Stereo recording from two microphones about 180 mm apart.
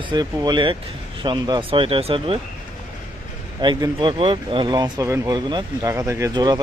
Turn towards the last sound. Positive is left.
turn(degrees=-20)  # may be behind; listen again after turning